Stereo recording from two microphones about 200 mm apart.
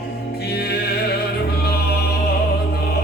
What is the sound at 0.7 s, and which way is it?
Music, 55° left (ahead or behind).